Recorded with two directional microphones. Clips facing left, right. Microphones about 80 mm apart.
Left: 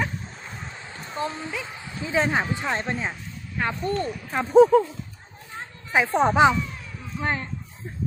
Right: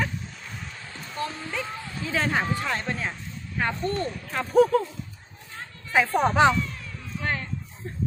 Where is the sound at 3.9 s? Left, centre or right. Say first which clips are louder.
Left 2 dB; centre.